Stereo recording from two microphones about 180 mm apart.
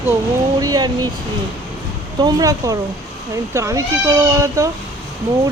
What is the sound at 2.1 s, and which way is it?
Speech, 20° right (ahead or behind).